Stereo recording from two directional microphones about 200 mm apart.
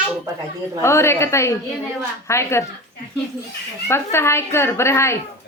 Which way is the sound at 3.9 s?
15° left (ahead or behind).